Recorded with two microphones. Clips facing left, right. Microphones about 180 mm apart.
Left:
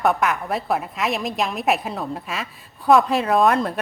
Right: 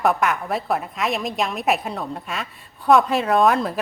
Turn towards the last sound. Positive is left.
turn(degrees=0)  # may be behind; listen again after turning